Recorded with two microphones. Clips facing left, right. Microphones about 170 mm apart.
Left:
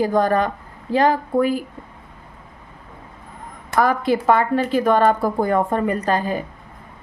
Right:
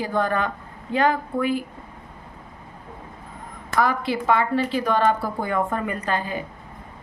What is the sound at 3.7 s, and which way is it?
A woman's voice, 45° left (ahead or behind).